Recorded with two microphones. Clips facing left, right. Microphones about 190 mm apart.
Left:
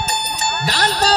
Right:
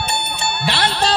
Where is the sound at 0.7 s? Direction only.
40° left (ahead or behind).